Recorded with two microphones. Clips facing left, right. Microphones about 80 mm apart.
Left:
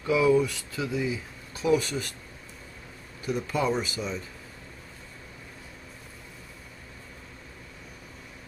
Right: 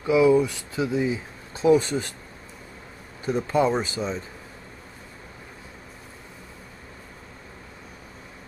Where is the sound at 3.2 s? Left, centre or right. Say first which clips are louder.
Right 6 dB; right.